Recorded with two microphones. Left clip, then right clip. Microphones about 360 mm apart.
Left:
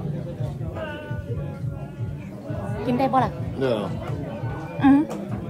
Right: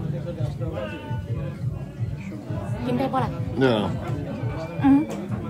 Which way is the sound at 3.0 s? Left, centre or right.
Left.